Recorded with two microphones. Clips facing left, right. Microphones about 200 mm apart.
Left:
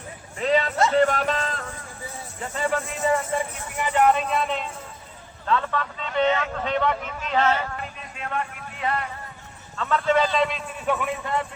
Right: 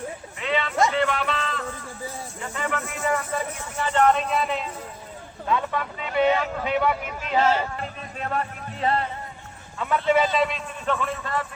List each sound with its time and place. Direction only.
0.3 s a sound: 40° left (ahead or behind)
0.9 s music: 40° left (ahead or behind)
2.6 s speech: 35° left (ahead or behind)
3.0 s speech: 25° left (ahead or behind)
3.8 s speech: 10° left (ahead or behind)
5.5 s speech: 15° right (ahead or behind)
7.5 s speech: 35° right (ahead or behind)
9.7 s a man's voice: 10° right (ahead or behind)
10.3 s speech: centre (ahead or behind)
10.8 s speech: 15° left (ahead or behind)